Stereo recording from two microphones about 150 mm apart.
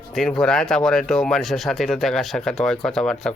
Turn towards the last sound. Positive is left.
turn(degrees=5)  # may be behind; listen again after turning